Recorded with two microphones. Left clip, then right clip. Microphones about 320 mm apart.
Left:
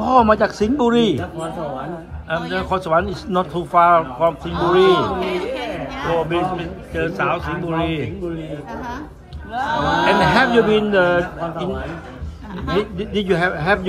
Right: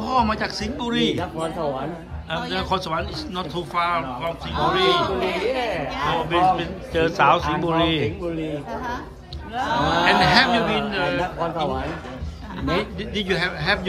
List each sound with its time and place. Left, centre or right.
0.0 s speech: centre
2.2 s speech: centre
9.7 s speech: centre
12.6 s speech: centre